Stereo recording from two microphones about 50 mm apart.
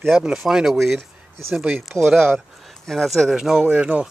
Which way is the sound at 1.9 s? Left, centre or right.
Right.